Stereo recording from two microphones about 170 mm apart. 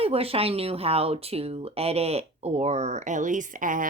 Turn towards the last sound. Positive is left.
turn(degrees=-50)  # may be behind; listen again after turning